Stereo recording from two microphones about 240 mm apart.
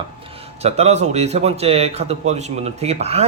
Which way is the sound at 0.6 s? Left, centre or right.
Right.